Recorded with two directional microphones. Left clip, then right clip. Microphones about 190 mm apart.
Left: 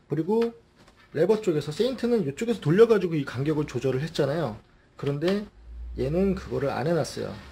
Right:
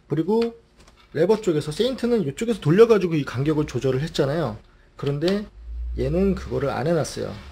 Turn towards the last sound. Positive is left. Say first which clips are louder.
# right 3 dB
turn(degrees=-20)  # may be behind; listen again after turning